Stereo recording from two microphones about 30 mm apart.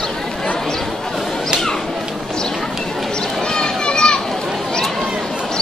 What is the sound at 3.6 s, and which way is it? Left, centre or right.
Children playing, left.